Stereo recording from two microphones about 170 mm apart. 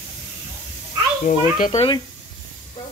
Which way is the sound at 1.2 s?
50° left (ahead or behind).